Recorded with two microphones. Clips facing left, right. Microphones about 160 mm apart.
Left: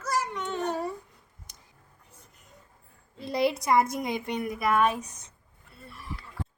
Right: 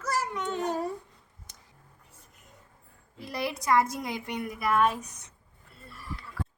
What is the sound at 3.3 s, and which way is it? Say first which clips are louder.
A woman's voice: left 3 dB; 20° left (ahead or behind).